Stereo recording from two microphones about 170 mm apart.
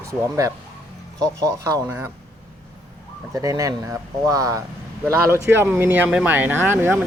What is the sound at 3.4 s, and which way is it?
Speech, 20° right (ahead or behind).